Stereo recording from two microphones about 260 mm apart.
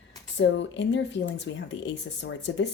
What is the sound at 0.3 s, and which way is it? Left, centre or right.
A woman's voice, left.